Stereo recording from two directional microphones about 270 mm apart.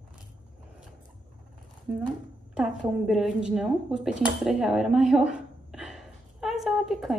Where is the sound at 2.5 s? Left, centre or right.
Centre.